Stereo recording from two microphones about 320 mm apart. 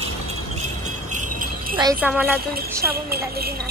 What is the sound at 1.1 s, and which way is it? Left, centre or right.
Jingle bell, right.